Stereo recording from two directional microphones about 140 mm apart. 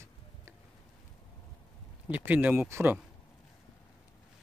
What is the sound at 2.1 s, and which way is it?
Speech, 10° right (ahead or behind).